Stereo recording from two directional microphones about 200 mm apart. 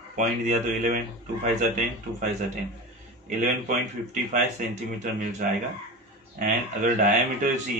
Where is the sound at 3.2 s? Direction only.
35° right (ahead or behind).